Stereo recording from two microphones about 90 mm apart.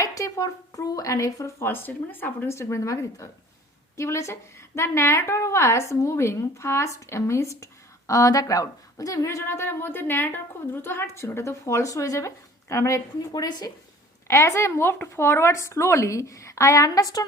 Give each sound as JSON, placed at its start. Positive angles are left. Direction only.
{"t": 0.0, "sound": "a woman's voice", "side_deg": 40}
{"t": 14.3, "sound": "a woman's voice", "side_deg": 30}